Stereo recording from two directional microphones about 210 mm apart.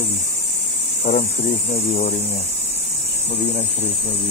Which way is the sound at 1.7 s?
45° left (ahead or behind).